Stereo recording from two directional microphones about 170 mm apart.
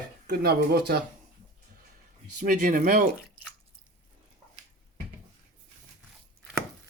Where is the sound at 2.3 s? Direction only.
50° right (ahead or behind).